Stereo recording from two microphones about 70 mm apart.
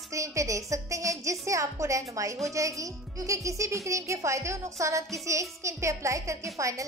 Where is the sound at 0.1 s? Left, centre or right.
Right.